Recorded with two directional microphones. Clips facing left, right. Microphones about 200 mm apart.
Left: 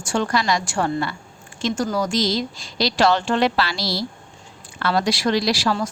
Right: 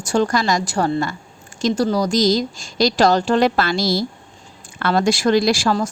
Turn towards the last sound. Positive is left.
turn(degrees=-45)  # may be behind; listen again after turning